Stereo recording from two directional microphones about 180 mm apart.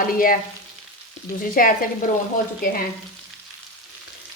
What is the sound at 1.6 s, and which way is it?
Speech, 50° left (ahead or behind).